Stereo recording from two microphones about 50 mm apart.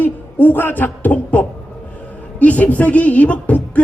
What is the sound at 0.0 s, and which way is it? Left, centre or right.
Speech, left.